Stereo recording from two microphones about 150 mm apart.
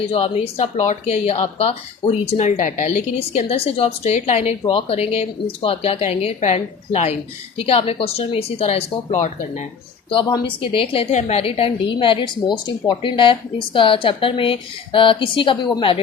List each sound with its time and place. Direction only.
0.1 s a woman's voice: 40° left (ahead or behind)
10.1 s a woman's voice: 35° left (ahead or behind)